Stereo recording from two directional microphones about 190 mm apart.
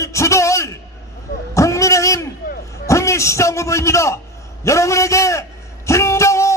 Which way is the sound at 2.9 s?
15° left (ahead or behind).